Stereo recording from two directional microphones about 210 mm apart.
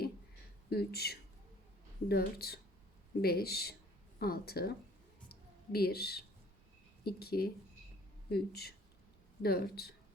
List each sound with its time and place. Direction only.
0.7 s speech: 50° left (ahead or behind)
5.3 s a sound: 50° left (ahead or behind)
7.0 s speech: 50° left (ahead or behind)